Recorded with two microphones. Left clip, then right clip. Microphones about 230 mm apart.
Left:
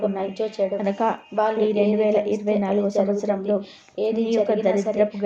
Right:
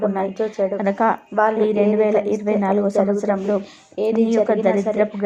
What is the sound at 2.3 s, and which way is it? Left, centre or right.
Speech, centre.